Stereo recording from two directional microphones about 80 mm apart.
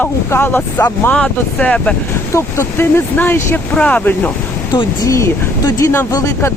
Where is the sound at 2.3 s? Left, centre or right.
Left; by 4.3 s centre.